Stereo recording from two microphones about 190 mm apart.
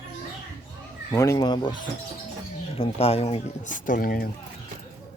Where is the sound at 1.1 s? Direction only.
15° left (ahead or behind).